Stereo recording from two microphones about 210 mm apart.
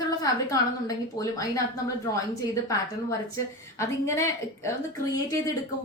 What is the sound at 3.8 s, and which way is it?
A woman's voice, 15° left (ahead or behind).